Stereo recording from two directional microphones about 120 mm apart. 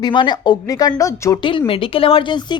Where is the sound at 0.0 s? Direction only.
40° left (ahead or behind).